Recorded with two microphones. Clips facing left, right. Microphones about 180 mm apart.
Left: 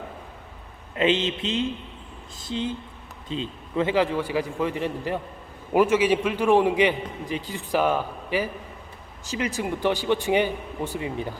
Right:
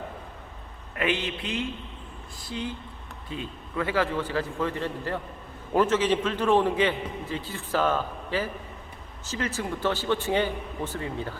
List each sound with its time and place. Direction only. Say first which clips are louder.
0.9 s a man's voice: left 5 dB; 20° left (ahead or behind)